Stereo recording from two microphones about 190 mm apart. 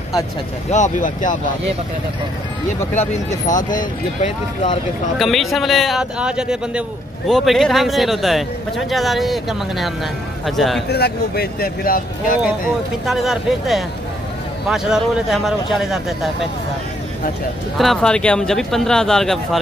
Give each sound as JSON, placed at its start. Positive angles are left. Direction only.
{"t": 0.7, "sound": "speech", "side_deg": 40}
{"t": 3.0, "sound": "speech", "side_deg": 40}
{"t": 5.2, "sound": "a man's voice", "side_deg": 0}
{"t": 10.9, "sound": "speech", "side_deg": 55}
{"t": 13.0, "sound": "a man's voice", "side_deg": 0}
{"t": 17.7, "sound": "a man's voice", "side_deg": 5}